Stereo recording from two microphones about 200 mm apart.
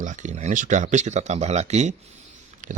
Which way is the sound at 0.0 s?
40° right (ahead or behind).